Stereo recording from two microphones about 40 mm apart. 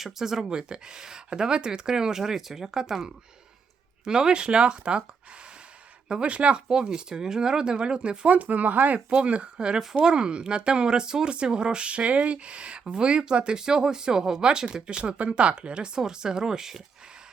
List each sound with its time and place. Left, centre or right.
0.0 s speech: centre
6.2 s speech: right
6.7 s speech: centre
8.4 s speech: right
9.0 s speech: right
16.0 s speech: centre